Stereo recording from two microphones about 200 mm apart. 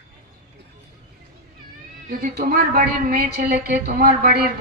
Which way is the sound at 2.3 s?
50° right (ahead or behind).